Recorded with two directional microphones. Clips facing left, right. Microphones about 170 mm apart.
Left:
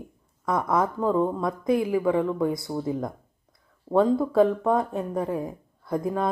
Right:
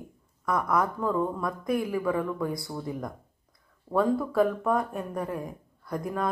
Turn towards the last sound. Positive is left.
turn(degrees=25)  # may be behind; listen again after turning